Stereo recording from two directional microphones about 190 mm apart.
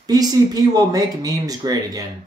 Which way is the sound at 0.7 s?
20° right (ahead or behind).